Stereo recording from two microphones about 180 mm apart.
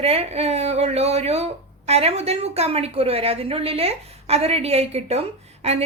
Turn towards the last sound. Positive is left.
turn(degrees=-35)  # may be behind; listen again after turning